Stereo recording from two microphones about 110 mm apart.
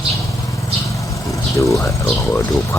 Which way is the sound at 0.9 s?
30° left (ahead or behind).